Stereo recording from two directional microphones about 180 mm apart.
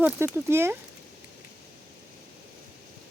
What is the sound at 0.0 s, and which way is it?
Speech, 10° right (ahead or behind).